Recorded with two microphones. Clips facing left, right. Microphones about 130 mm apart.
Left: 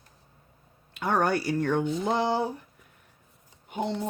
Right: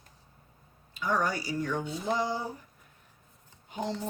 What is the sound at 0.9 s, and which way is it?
Speech, 65° left (ahead or behind).